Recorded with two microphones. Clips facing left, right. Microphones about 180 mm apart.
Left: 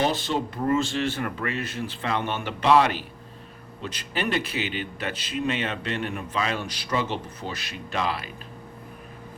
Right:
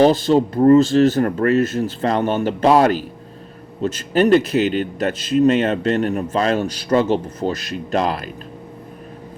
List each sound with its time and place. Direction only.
0.0 s speech: 40° right (ahead or behind)